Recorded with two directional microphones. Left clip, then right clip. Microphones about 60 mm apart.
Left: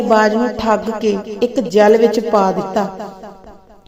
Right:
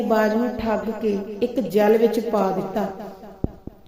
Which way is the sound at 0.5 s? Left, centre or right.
Left.